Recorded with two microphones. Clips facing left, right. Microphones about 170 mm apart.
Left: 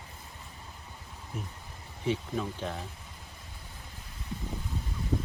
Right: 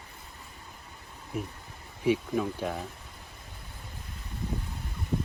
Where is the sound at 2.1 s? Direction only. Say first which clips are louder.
Right 5 dB; 10° right (ahead or behind).